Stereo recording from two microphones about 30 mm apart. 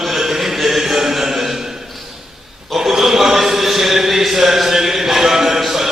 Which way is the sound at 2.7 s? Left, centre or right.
Centre.